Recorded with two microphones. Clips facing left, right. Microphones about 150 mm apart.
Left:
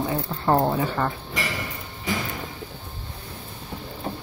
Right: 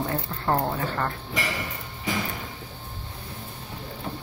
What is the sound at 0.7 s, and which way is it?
Speech, 10° left (ahead or behind).